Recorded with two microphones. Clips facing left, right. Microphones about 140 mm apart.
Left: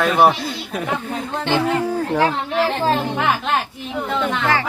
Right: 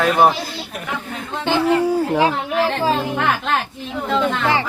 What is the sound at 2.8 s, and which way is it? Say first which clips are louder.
Livestock: even; 5° right (ahead or behind).